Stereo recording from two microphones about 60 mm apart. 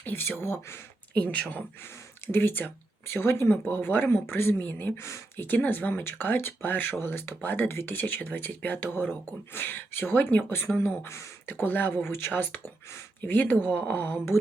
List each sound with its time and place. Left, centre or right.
0.0 s speech: left
1.2 s speech: left
1.8 s speech: left
4.9 s speech: left
5.4 s speech: left
11.0 s speech: left
11.6 s speech: left